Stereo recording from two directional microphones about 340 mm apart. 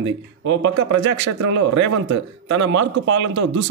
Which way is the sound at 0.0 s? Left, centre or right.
Right.